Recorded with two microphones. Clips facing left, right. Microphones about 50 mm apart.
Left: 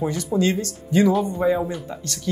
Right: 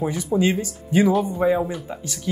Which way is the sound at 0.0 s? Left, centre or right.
Centre.